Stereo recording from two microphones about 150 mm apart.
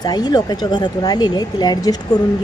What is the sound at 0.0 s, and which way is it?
A woman's voice, 25° left (ahead or behind).